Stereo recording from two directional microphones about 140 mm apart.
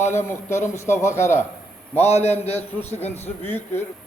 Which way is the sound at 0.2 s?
20° left (ahead or behind).